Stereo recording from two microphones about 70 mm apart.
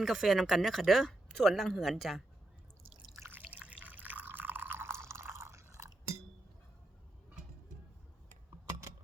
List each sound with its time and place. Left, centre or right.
0.0 s speech: centre
3.2 s drip: right
3.4 s drip: centre; by 5.8 s right